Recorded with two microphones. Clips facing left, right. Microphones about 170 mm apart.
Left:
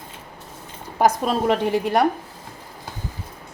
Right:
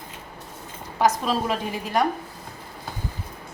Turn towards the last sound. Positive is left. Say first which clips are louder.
# left 5 dB
turn(degrees=65)  # may be behind; listen again after turning